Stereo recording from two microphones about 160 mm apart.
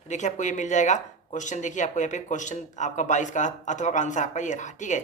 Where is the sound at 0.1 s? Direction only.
50° left (ahead or behind).